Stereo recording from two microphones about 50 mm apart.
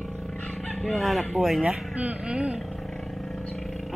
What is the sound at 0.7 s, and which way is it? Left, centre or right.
Speech, centre.